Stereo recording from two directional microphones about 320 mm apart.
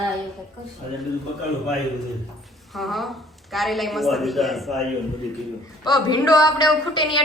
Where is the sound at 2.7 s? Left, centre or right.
Centre.